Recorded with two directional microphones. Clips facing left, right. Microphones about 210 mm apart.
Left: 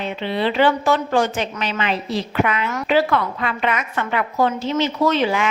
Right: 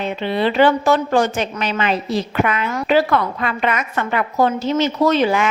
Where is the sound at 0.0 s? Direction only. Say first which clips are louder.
Right 3 dB; 45° right (ahead or behind).